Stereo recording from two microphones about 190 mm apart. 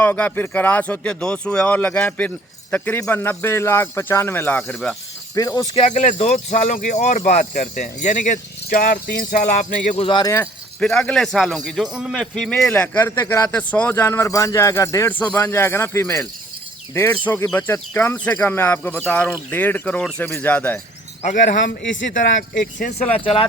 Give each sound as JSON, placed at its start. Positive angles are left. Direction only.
{"t": 0.0, "sound": "a man's voice", "side_deg": 10}
{"t": 5.3, "sound": "a man's voice", "side_deg": 15}
{"t": 5.7, "sound": "speech", "side_deg": 35}
{"t": 9.9, "sound": "speech", "side_deg": 25}
{"t": 10.8, "sound": "a man's voice", "side_deg": 5}
{"t": 21.8, "sound": "speech", "side_deg": 80}
{"t": 23.1, "sound": "speech", "side_deg": 30}